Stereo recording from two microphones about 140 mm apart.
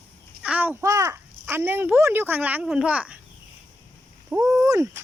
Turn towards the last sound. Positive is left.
turn(degrees=-20)  # may be behind; listen again after turning